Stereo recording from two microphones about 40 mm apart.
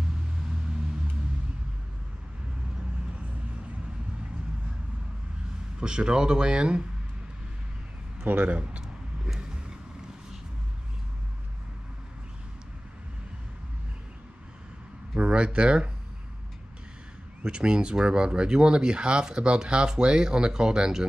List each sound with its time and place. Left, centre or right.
5.8 s speech: right
8.2 s speech: right
15.1 s speech: right
17.4 s speech: right